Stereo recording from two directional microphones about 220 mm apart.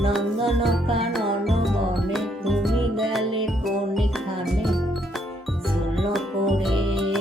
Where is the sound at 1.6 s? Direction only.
Centre (ahead or behind).